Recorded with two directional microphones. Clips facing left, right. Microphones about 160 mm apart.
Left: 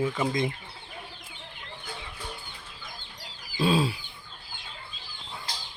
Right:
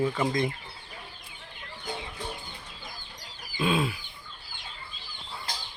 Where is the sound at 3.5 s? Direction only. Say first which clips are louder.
Left 2 dB; 35° left (ahead or behind).